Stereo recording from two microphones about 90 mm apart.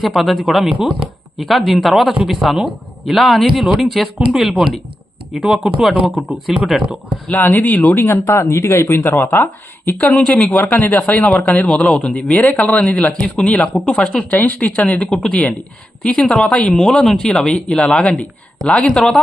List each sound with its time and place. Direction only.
0.0 s speech: centre (ahead or behind)
7.3 s speech: 20° left (ahead or behind)
8.0 s speech: 30° left (ahead or behind); by 19.2 s 5° left (ahead or behind)